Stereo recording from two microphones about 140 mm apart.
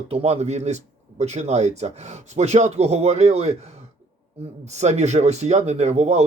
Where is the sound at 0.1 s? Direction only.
50° right (ahead or behind).